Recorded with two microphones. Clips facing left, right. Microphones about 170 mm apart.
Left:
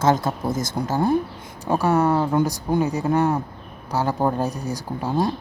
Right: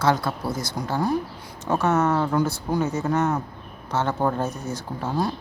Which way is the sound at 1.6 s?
10° left (ahead or behind).